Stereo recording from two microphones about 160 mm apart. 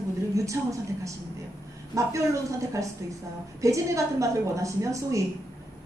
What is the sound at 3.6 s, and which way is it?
A woman's voice, 20° right (ahead or behind).